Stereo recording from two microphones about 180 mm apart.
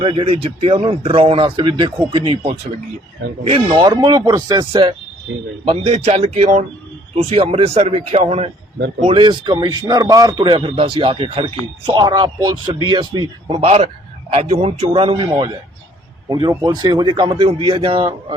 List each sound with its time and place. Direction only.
0.0 s a man's voice: 30° right (ahead or behind)
16.3 s a man's voice: 20° right (ahead or behind)